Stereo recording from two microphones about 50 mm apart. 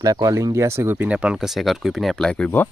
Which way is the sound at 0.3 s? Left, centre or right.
Right.